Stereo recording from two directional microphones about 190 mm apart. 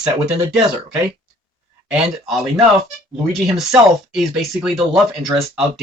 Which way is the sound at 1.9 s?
5° right (ahead or behind).